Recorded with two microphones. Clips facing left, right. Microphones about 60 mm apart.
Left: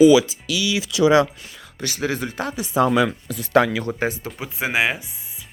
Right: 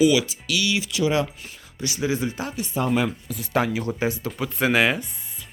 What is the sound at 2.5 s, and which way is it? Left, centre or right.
Speech, left.